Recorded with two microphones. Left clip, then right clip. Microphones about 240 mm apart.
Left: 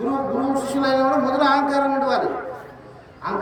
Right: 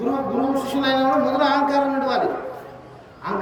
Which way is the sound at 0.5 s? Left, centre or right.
Right.